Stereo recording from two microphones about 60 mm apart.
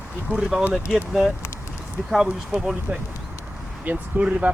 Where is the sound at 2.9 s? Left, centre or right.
Right.